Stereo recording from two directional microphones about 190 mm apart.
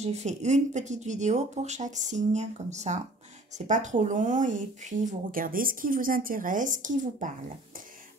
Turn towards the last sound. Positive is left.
turn(degrees=-45)  # may be behind; listen again after turning